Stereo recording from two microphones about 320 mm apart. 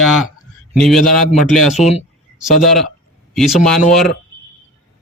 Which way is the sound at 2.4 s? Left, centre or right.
Centre.